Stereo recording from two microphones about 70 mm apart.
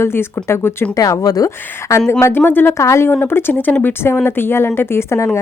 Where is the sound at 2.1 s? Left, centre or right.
Left.